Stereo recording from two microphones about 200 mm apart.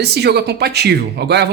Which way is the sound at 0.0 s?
55° right (ahead or behind).